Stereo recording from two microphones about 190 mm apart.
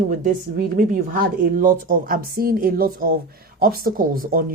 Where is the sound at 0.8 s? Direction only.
45° right (ahead or behind).